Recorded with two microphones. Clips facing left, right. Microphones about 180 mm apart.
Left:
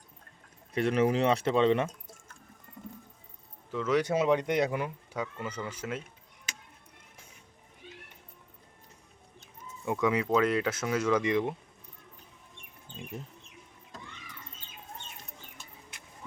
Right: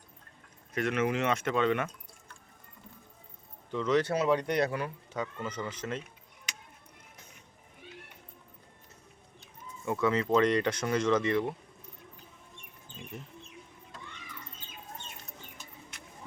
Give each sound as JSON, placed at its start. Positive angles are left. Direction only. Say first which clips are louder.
{"t": 0.7, "sound": "speech", "louder": "left 3 dB", "side_deg": 35}
{"t": 1.9, "sound": "drip", "louder": "left 4 dB", "side_deg": 45}
{"t": 3.7, "sound": "speech", "louder": "even", "side_deg": 5}
{"t": 4.1, "sound": "speech", "louder": "left 1 dB", "side_deg": 20}
{"t": 9.8, "sound": "speech", "louder": "even", "side_deg": 15}